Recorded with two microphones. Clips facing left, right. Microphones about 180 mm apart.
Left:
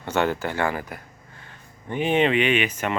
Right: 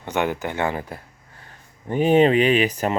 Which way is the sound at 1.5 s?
40° right (ahead or behind).